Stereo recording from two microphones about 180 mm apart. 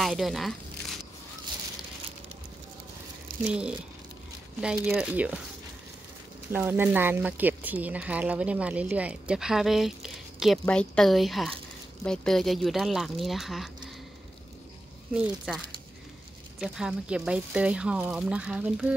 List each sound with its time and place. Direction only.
0.0 s speech: centre (ahead or behind)
3.3 s a sound: 50° right (ahead or behind)
4.8 s speech: 5° right (ahead or behind)
6.5 s speech: 10° right (ahead or behind)
15.1 s speech: centre (ahead or behind)